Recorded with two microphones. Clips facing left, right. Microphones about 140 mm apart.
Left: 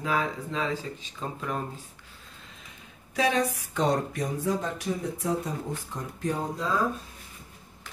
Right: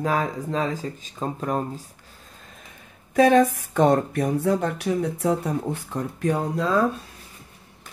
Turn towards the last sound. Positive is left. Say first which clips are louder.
# right 6 dB
turn(degrees=-70)  # may be behind; listen again after turning